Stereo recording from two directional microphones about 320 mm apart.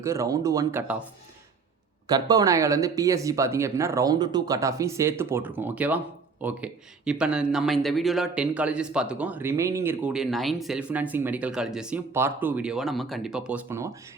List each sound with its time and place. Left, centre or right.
0.0 s speech: centre
2.0 s speech: centre